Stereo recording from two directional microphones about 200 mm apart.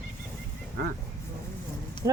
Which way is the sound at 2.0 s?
15° right (ahead or behind).